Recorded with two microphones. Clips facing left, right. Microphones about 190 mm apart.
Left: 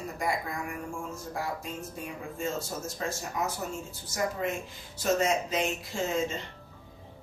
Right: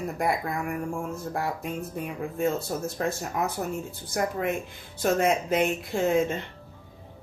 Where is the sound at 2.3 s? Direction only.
60° right (ahead or behind).